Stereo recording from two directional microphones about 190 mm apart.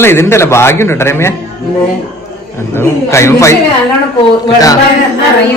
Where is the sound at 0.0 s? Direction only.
15° left (ahead or behind).